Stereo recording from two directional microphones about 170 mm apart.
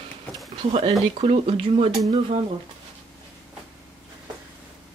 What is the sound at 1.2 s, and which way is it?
Speech, 35° right (ahead or behind).